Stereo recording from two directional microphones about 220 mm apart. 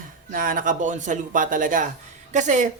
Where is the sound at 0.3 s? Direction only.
40° right (ahead or behind).